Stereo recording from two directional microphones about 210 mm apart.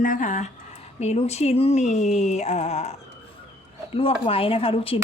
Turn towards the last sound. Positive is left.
turn(degrees=25)  # may be behind; listen again after turning